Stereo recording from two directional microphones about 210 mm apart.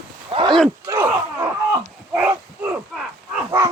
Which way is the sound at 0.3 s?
25° right (ahead or behind).